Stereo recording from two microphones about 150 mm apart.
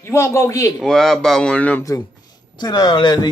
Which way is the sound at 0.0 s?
20° left (ahead or behind).